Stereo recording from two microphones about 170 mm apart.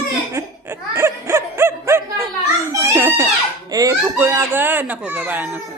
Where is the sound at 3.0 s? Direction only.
15° right (ahead or behind).